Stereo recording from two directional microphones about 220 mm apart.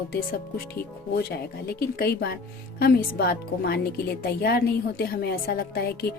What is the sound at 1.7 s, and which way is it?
Speech, 45° left (ahead or behind).